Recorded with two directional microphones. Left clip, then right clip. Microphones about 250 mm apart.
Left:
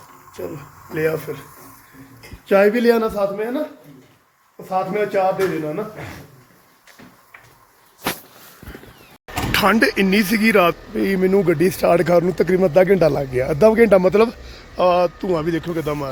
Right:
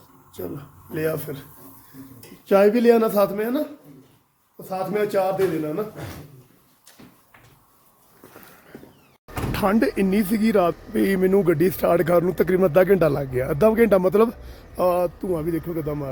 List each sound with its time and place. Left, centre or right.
0.4 s a man's voice: centre
2.5 s speech: centre
4.7 s speech: centre
9.5 s a sound: centre
9.8 s a man's voice: centre